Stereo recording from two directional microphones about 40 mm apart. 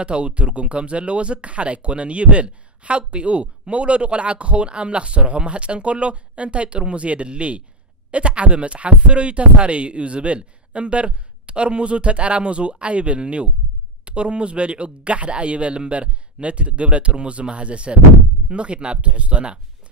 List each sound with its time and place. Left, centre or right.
0.0 s speech: right